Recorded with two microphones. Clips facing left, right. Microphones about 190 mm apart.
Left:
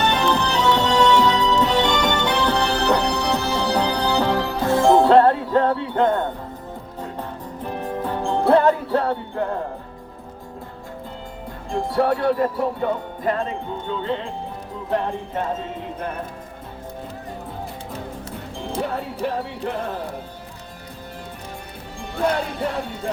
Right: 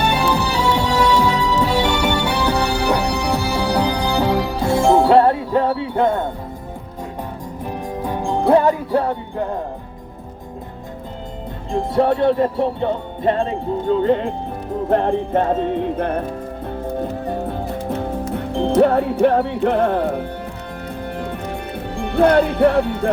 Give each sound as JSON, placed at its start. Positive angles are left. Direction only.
{"t": 0.0, "sound": "music", "side_deg": -10}
{"t": 7.6, "sound": "music", "side_deg": -15}
{"t": 11.7, "sound": "music", "side_deg": -25}
{"t": 14.8, "sound": "music", "side_deg": -55}
{"t": 17.0, "sound": "music", "side_deg": -65}
{"t": 21.9, "sound": "speech", "side_deg": -60}